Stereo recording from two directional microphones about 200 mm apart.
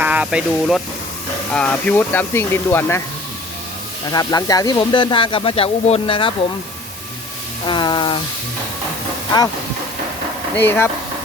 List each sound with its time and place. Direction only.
0.0 s speech: 5° right (ahead or behind)
1.5 s speech: 5° left (ahead or behind)
4.1 s speech: 20° left (ahead or behind)
7.6 s speech: 25° left (ahead or behind)
10.5 s speech: 10° left (ahead or behind)